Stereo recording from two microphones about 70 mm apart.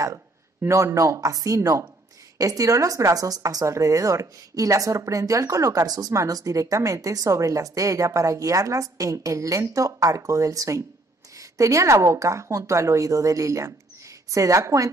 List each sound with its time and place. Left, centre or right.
0.0 s a woman's voice: right